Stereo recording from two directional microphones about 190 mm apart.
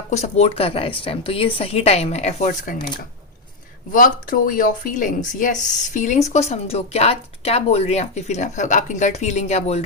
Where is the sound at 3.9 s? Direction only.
45° left (ahead or behind).